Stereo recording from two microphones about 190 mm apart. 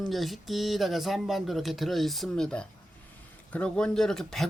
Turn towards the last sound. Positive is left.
turn(degrees=0)  # may be behind; listen again after turning